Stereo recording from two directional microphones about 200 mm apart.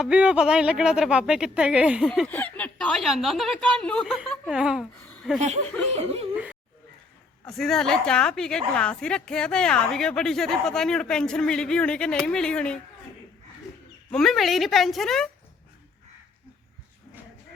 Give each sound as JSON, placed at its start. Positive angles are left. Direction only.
{"t": 0.0, "sound": "a woman's voice", "side_deg": -5}
{"t": 2.0, "sound": "a woman's voice", "side_deg": 5}
{"t": 5.1, "sound": "chuckle", "side_deg": 0}
{"t": 5.9, "sound": "chuckle", "side_deg": -30}
{"t": 6.3, "sound": "a woman's voice", "side_deg": -5}
{"t": 14.1, "sound": "a woman's voice", "side_deg": 0}